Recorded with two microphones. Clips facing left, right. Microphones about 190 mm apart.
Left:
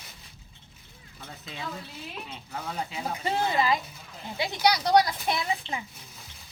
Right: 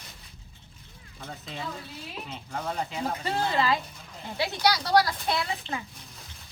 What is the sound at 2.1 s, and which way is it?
Speech, centre (ahead or behind).